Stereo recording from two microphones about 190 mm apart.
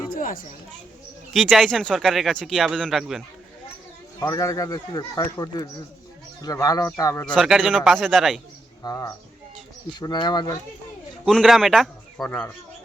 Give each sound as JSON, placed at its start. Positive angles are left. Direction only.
{"t": 0.1, "sound": "a sound", "side_deg": 50}
{"t": 1.3, "sound": "speech", "side_deg": 0}
{"t": 4.2, "sound": "speech", "side_deg": 15}
{"t": 7.3, "sound": "speech", "side_deg": 0}
{"t": 8.8, "sound": "speech", "side_deg": 20}
{"t": 11.3, "sound": "speech", "side_deg": 0}